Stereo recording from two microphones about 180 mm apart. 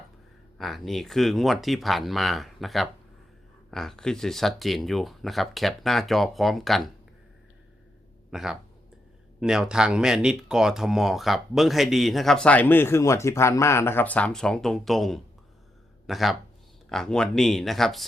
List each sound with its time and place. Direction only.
0.6 s speech: centre (ahead or behind)
8.3 s speech: 5° right (ahead or behind)